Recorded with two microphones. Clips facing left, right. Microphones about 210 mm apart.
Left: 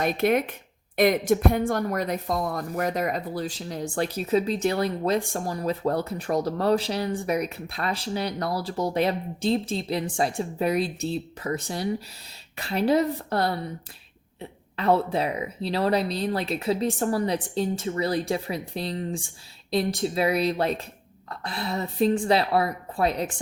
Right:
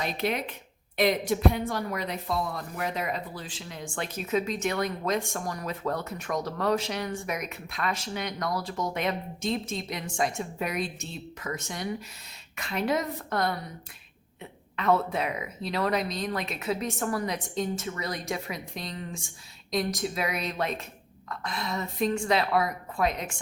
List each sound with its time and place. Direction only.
0.0 s a woman's voice: 50° left (ahead or behind); by 13.6 s 30° left (ahead or behind)
14.8 s a woman's voice: 30° left (ahead or behind)